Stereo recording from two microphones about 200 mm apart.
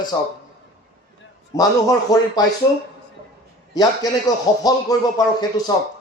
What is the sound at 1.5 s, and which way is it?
Speech, 15° left (ahead or behind).